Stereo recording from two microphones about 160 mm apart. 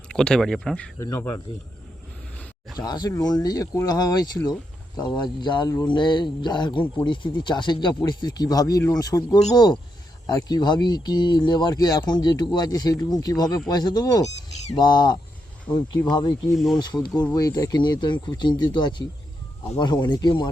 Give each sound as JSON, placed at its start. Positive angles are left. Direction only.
{"t": 0.1, "sound": "speech", "side_deg": 5}
{"t": 0.9, "sound": "speech", "side_deg": 20}
{"t": 2.7, "sound": "speech", "side_deg": 25}
{"t": 15.7, "sound": "speech", "side_deg": 10}
{"t": 16.0, "sound": "speech", "side_deg": 25}